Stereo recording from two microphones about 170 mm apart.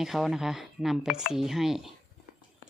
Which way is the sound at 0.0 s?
Centre (ahead or behind).